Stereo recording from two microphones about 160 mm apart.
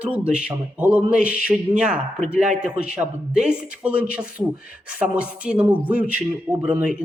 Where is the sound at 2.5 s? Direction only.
45° right (ahead or behind).